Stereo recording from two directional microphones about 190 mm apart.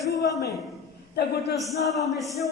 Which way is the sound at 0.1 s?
20° left (ahead or behind).